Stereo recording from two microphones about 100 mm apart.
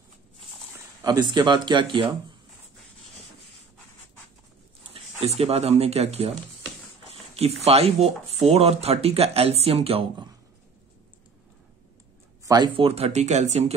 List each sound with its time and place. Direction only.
1.0 s a man's voice: 40° right (ahead or behind)
5.4 s speech: 90° right
7.6 s speech: 90° right; by 10.0 s 70° right (ahead or behind)
12.4 s speech: 40° right (ahead or behind)
12.7 s speech: 80° right